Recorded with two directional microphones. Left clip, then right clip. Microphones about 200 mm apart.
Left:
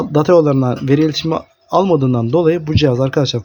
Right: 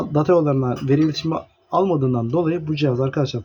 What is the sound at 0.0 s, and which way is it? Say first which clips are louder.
Speech: left 6 dB; 45° left (ahead or behind).